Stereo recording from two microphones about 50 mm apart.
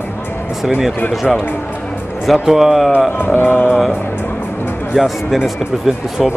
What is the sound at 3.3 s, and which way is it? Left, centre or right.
Speech, left.